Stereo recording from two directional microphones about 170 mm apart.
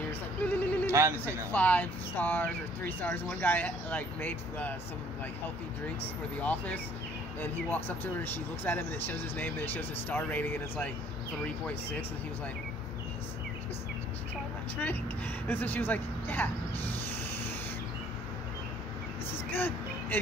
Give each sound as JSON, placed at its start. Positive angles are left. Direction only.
{"t": 0.4, "sound": "a sound", "side_deg": 10}
{"t": 0.9, "sound": "a man's voice", "side_deg": -15}
{"t": 1.5, "sound": "speech", "side_deg": 10}
{"t": 6.4, "sound": "speech", "side_deg": 10}
{"t": 15.4, "sound": "speech", "side_deg": 10}
{"t": 19.5, "sound": "a sound", "side_deg": 10}